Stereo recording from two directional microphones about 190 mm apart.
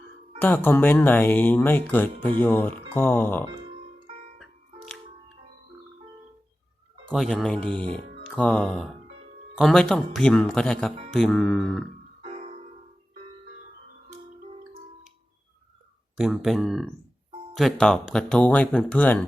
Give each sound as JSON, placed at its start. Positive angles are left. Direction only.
{"t": 0.3, "sound": "speech", "side_deg": 10}
{"t": 7.1, "sound": "speech", "side_deg": 0}
{"t": 12.2, "sound": "music", "side_deg": -35}
{"t": 16.1, "sound": "speech", "side_deg": 0}